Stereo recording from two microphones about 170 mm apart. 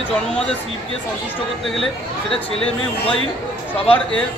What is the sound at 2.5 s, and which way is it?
Speech, 35° left (ahead or behind).